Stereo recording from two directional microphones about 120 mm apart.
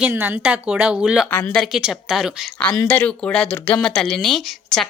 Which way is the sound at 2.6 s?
10° left (ahead or behind).